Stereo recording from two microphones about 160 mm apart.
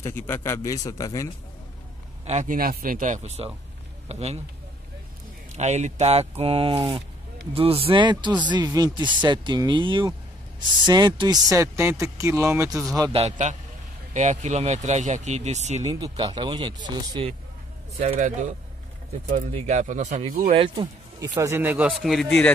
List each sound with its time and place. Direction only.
0.0 s a man's voice: 15° left (ahead or behind)
2.2 s speech: 50° right (ahead or behind)
5.5 s speech: 45° right (ahead or behind); by 12.7 s 20° right (ahead or behind)
13.1 s speech: 45° right (ahead or behind)
15.8 s speech: 25° right (ahead or behind)
19.2 s speech: 50° right (ahead or behind)
20.5 s speech: 30° right (ahead or behind)
21.4 s speech: 15° right (ahead or behind); by 22.5 s 5° left (ahead or behind)